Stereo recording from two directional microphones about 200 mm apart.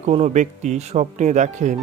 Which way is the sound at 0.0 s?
35° right (ahead or behind).